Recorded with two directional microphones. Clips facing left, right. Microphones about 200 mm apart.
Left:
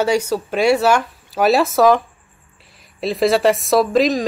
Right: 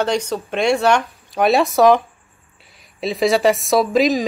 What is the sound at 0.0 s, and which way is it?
A woman's voice, 10° left (ahead or behind).